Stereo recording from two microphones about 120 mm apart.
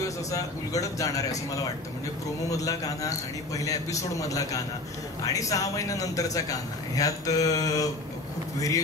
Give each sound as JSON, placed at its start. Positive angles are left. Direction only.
{"t": 0.0, "sound": "a man's voice", "side_deg": 30}